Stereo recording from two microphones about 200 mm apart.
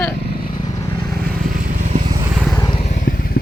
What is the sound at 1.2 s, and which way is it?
Vehicle, 45° right (ahead or behind).